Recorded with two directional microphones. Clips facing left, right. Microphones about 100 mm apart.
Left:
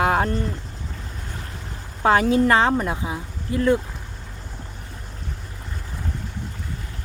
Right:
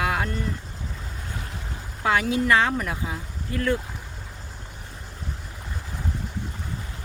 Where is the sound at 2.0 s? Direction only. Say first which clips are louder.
Left 5 dB; 35° left (ahead or behind); by 3.7 s 20° left (ahead or behind).